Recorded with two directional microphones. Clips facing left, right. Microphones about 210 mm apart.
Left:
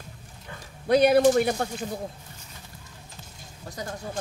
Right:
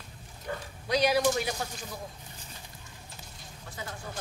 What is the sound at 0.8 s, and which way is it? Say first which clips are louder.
Speech: left 8 dB; 55° left (ahead or behind).